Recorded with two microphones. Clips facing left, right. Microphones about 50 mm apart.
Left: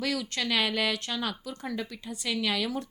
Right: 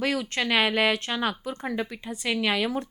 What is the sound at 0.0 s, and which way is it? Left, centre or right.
Speech, right.